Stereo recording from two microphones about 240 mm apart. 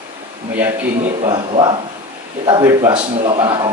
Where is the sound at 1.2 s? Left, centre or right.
Right.